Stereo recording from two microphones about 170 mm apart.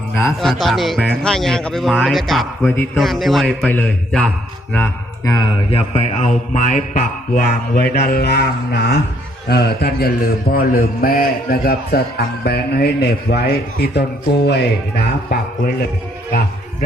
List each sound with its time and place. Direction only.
0.3 s speech: centre (ahead or behind)
2.6 s a man's voice: 10° left (ahead or behind)
3.0 s speech: centre (ahead or behind)
5.2 s a man's voice: 25° left (ahead or behind); by 15.7 s 65° left (ahead or behind)